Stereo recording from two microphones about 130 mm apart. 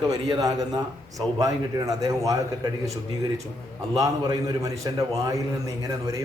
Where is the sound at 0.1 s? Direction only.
30° right (ahead or behind).